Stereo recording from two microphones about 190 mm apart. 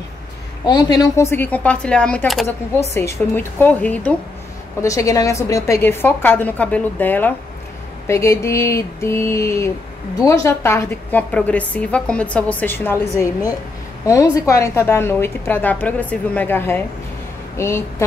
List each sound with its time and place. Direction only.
0.9 s a woman's voice: 15° left (ahead or behind)